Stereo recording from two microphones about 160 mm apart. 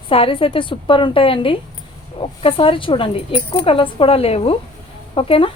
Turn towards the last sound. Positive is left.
turn(degrees=35)  # may be behind; listen again after turning